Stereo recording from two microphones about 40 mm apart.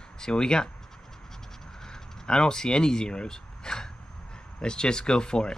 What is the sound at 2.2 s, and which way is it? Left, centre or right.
Speech, centre.